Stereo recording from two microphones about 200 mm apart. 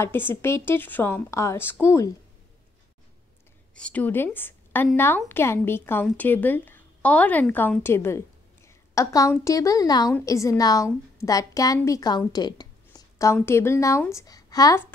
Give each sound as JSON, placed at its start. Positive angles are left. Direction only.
{"t": 0.0, "sound": "speech", "side_deg": 10}
{"t": 3.7, "sound": "a woman's voice", "side_deg": 5}